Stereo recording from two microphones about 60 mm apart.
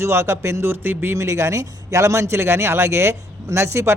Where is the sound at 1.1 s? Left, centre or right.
Right.